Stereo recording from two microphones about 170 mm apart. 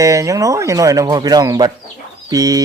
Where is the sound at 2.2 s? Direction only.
20° right (ahead or behind).